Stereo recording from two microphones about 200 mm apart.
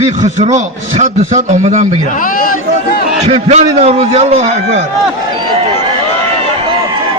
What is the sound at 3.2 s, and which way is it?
A man's voice, 30° right (ahead or behind).